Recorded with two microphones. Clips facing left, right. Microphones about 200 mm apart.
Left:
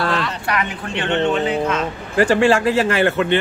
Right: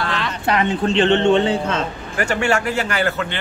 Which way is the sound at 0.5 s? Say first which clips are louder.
Right 6 dB; 25° right (ahead or behind).